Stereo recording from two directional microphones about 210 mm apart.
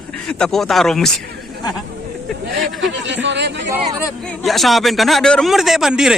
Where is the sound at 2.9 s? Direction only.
60° right (ahead or behind).